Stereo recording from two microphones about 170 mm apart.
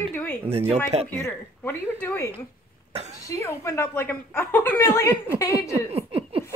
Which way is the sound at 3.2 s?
20° left (ahead or behind).